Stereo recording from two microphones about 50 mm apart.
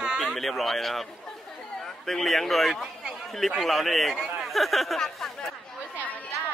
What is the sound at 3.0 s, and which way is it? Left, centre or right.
Chatter, centre.